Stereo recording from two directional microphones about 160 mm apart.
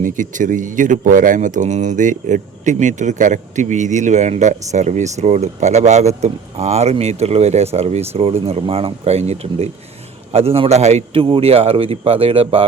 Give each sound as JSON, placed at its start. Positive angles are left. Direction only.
{"t": 0.0, "sound": "a man's voice", "side_deg": -55}